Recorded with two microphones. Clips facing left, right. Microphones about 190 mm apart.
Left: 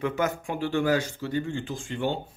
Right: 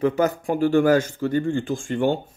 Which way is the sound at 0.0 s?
35° right (ahead or behind).